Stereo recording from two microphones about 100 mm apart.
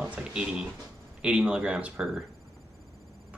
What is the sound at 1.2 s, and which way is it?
Speech, 10° right (ahead or behind).